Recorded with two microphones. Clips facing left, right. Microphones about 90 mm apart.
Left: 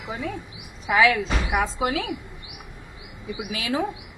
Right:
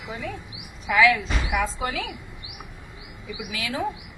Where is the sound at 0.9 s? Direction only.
30° left (ahead or behind).